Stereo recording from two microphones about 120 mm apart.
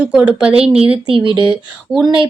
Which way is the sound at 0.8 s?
50° right (ahead or behind).